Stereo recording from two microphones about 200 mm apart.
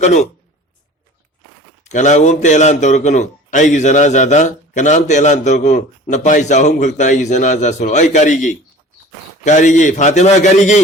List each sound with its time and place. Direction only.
0.0 s a man's voice: 35° left (ahead or behind)
1.8 s a man's voice: 35° left (ahead or behind)